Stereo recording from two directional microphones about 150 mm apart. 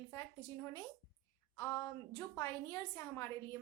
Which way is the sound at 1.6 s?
15° left (ahead or behind).